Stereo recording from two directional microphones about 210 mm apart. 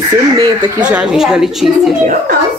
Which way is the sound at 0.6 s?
5° right (ahead or behind).